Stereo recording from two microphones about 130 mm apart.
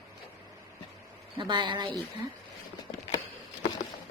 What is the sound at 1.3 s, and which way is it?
Speech, 35° right (ahead or behind).